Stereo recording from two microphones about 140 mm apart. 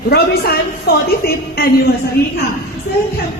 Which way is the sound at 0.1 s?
90° left.